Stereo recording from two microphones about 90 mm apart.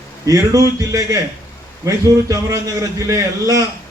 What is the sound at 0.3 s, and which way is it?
A man's voice, 35° right (ahead or behind).